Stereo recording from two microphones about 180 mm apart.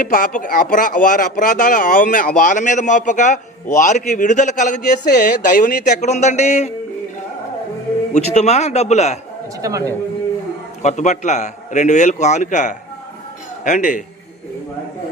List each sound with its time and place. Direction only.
0.0 s speech: 50° left (ahead or behind)
5.0 s speech: 55° left (ahead or behind); by 6.7 s 40° left (ahead or behind)
8.1 s a man's voice: 40° left (ahead or behind)
9.6 s speech: 20° right (ahead or behind)
10.8 s a man's voice: 40° left (ahead or behind)